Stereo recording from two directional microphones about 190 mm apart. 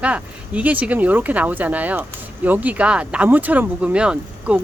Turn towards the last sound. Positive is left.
turn(degrees=-5)  # may be behind; listen again after turning